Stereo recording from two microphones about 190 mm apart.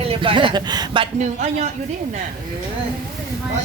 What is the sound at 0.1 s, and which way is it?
Speech, 25° right (ahead or behind).